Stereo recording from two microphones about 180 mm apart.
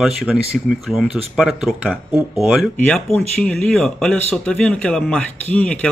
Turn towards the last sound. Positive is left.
turn(degrees=5)  # may be behind; listen again after turning